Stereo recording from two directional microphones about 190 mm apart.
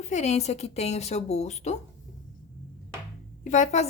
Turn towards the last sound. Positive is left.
turn(degrees=40)  # may be behind; listen again after turning